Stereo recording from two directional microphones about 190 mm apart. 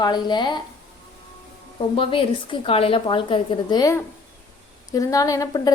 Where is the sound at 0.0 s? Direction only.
20° left (ahead or behind).